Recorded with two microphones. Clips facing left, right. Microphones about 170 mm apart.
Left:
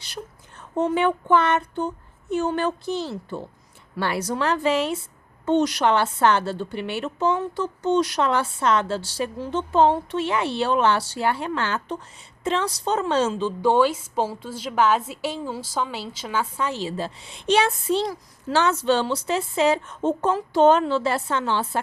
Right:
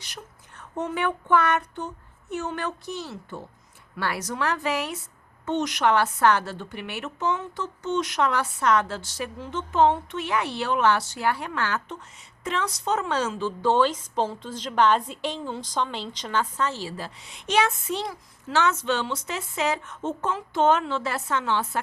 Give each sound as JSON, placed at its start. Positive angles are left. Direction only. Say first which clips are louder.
{"t": 0.8, "sound": "a woman's voice", "louder": "left 6 dB", "side_deg": 30}
{"t": 13.6, "sound": "a woman's voice", "louder": "left 2 dB", "side_deg": 10}